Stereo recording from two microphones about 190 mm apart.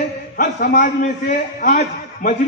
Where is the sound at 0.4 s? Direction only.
45° left (ahead or behind).